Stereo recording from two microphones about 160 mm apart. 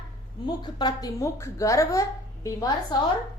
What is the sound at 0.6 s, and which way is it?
A woman's voice, 25° left (ahead or behind).